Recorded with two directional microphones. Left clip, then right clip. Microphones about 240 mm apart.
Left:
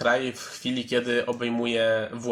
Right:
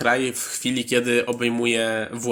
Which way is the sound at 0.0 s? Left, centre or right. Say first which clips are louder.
Right 3 dB; right.